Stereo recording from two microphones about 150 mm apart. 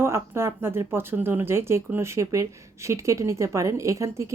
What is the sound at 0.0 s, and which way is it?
Speech, 15° right (ahead or behind).